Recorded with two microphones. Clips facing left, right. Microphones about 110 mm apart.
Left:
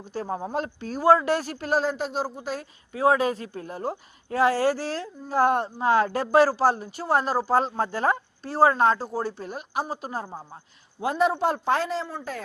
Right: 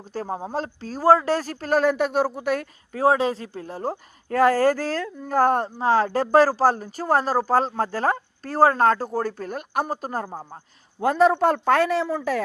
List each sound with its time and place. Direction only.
0.0 s speech: 40° right (ahead or behind)
1.8 s a man's voice: 60° right (ahead or behind)
2.9 s speech: 40° right (ahead or behind)
4.3 s speech: 45° right (ahead or behind)
5.0 s a man's voice: 60° right (ahead or behind)
5.4 s a man's voice: 40° right (ahead or behind); by 12.4 s 80° right